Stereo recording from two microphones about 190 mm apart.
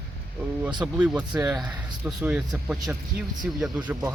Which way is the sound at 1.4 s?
20° right (ahead or behind).